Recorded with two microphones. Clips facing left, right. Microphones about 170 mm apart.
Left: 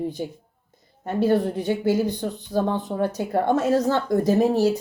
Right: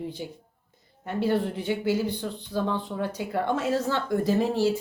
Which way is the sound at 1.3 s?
40° left (ahead or behind).